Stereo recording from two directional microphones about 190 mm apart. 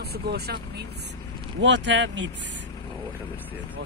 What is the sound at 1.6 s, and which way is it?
Speech, 70° right (ahead or behind).